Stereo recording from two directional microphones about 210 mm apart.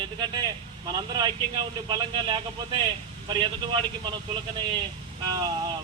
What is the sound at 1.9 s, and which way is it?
Speech, 20° right (ahead or behind).